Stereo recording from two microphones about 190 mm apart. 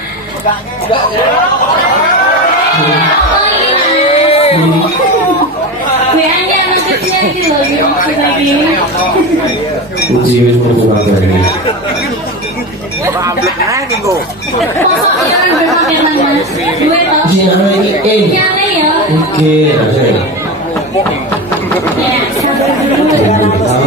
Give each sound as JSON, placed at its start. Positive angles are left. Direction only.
{"t": 4.1, "sound": "music", "side_deg": 30}
{"t": 13.2, "sound": "speech", "side_deg": -15}